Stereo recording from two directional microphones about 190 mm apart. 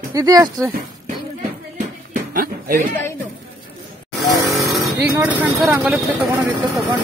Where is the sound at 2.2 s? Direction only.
50° right (ahead or behind).